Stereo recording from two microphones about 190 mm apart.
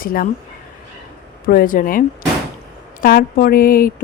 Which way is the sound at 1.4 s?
45° left (ahead or behind).